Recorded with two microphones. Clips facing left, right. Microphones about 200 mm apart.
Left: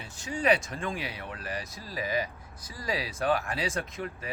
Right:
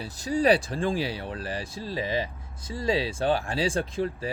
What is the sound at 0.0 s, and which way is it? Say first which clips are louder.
Speech: right 6 dB; 35° right (ahead or behind).